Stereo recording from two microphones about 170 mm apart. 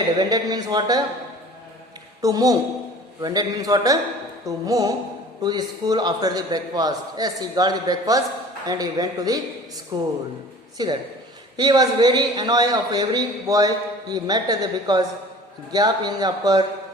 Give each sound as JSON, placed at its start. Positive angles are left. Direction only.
{"t": 0.2, "sound": "a man's voice", "side_deg": -25}
{"t": 2.2, "sound": "a man's voice", "side_deg": -20}